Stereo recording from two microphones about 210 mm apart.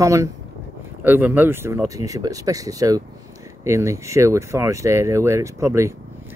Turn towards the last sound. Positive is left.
turn(degrees=-15)  # may be behind; listen again after turning